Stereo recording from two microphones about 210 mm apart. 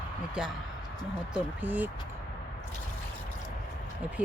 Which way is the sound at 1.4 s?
10° right (ahead or behind).